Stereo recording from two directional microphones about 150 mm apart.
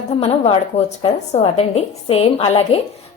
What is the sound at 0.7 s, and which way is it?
A woman's voice, 40° left (ahead or behind).